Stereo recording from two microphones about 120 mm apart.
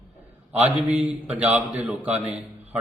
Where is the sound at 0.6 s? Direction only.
10° right (ahead or behind).